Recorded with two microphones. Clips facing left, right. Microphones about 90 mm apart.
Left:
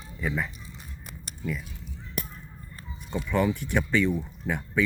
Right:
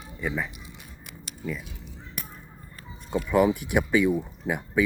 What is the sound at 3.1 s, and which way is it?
Speech, 15° right (ahead or behind).